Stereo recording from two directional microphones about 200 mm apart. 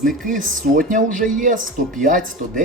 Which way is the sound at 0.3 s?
40° right (ahead or behind).